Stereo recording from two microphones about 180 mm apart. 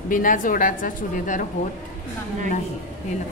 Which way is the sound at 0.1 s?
50° left (ahead or behind).